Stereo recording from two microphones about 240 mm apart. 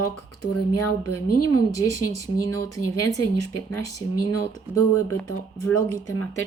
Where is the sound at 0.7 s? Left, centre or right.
Left.